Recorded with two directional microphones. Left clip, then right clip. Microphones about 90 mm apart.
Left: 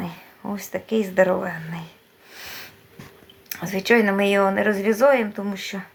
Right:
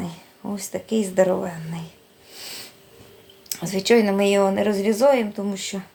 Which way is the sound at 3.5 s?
5° right (ahead or behind).